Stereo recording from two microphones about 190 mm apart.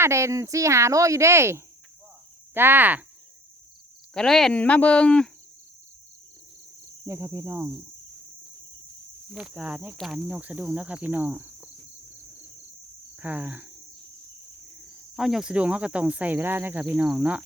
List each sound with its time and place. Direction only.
0.0 s speech: 15° right (ahead or behind)
4.1 s speech: 5° left (ahead or behind)
7.0 s speech: 15° right (ahead or behind)
9.3 s speech: 5° right (ahead or behind)
13.1 s speech: 10° right (ahead or behind)
15.1 s speech: 5° right (ahead or behind)